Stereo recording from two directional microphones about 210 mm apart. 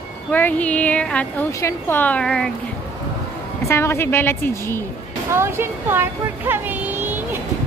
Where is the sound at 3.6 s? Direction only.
10° left (ahead or behind).